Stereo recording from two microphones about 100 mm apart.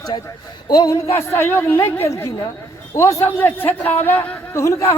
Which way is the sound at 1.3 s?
20° left (ahead or behind).